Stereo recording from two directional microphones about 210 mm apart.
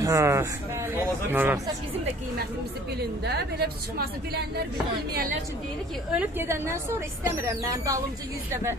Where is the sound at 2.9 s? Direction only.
50° right (ahead or behind).